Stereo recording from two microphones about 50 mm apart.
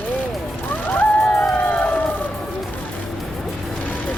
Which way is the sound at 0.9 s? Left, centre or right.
Left.